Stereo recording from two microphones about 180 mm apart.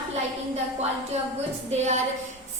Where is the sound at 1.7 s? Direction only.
40° right (ahead or behind).